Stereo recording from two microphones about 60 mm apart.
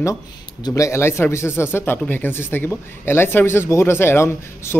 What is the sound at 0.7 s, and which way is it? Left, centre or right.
Speech, left.